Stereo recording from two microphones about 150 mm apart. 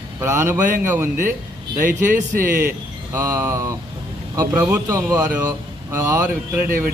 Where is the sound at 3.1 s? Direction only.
20° right (ahead or behind).